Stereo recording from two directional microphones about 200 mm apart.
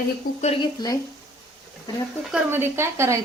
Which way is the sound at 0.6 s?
20° left (ahead or behind).